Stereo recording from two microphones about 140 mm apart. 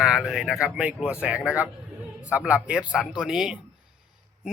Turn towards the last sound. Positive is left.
turn(degrees=-5)  # may be behind; listen again after turning